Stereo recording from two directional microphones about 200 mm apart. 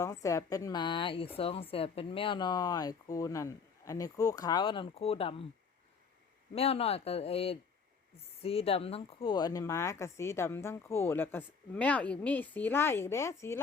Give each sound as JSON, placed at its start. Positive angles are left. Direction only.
{"t": 0.0, "sound": "speech", "side_deg": 15}
{"t": 6.5, "sound": "speech", "side_deg": 30}